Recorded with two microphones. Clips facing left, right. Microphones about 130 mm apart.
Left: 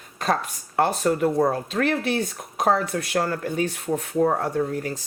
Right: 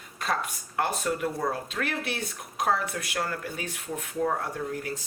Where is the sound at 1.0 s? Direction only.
40° left (ahead or behind).